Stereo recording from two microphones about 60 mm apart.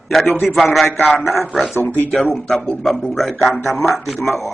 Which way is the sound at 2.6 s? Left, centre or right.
Left.